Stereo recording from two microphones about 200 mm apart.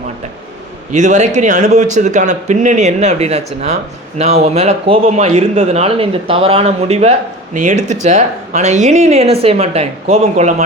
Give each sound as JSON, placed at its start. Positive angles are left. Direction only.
{"t": 0.9, "sound": "speech", "side_deg": -35}